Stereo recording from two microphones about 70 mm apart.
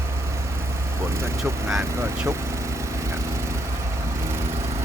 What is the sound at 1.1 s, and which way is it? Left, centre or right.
Speech, right.